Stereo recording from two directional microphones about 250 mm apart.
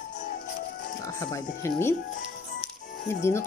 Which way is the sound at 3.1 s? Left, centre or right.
Centre.